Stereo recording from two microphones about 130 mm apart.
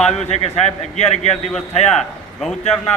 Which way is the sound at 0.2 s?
55° left (ahead or behind).